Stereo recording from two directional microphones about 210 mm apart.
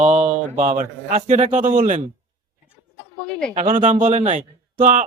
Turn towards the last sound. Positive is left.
turn(degrees=-35)  # may be behind; listen again after turning